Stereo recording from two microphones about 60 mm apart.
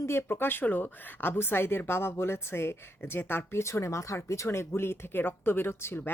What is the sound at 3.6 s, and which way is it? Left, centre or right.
Speech, left.